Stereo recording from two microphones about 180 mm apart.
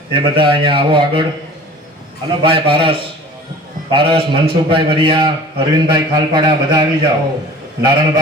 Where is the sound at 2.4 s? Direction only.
30° right (ahead or behind).